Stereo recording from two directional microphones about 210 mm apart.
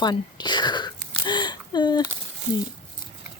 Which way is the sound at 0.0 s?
20° left (ahead or behind).